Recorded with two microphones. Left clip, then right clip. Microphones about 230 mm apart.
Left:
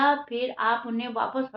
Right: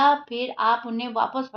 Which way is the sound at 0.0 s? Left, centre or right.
Right.